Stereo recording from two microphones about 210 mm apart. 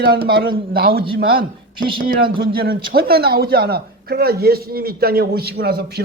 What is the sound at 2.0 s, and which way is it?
Speech, 45° right (ahead or behind).